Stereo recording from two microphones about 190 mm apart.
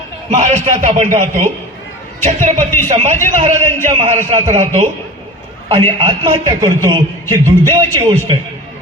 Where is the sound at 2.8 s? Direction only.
35° right (ahead or behind).